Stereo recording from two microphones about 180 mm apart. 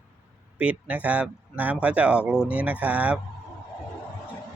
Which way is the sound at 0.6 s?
5° right (ahead or behind).